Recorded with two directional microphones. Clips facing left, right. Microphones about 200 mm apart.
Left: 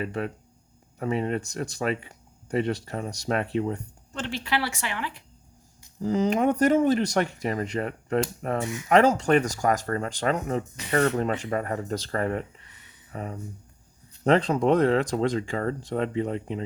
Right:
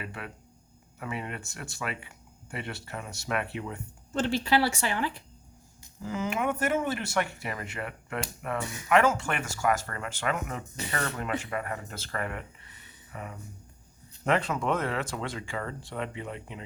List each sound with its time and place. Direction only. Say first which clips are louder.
0.0 s speech: left 10 dB; 40° left (ahead or behind)
4.1 s speech: right 4 dB; 35° right (ahead or behind)
6.0 s speech: left 8 dB; 35° left (ahead or behind)